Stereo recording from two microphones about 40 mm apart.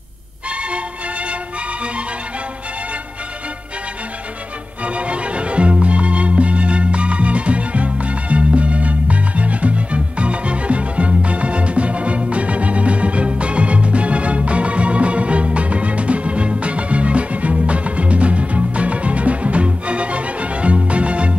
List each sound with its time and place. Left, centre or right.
0.5 s music: right
4.8 s music: right